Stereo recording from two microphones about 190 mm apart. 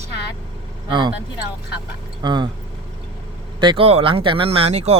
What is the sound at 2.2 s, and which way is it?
Speech, 25° right (ahead or behind).